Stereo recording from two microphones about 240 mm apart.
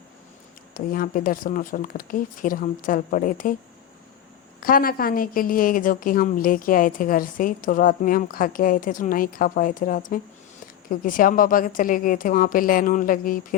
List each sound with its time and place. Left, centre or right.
0.7 s a woman's voice: left
4.6 s a woman's voice: left